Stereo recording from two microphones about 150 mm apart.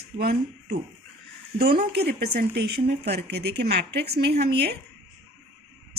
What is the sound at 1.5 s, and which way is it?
Speech, 90° right.